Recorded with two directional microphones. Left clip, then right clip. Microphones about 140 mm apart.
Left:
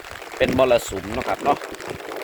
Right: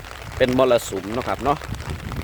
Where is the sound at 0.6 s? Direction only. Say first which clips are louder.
Left 1 dB; 35° right (ahead or behind).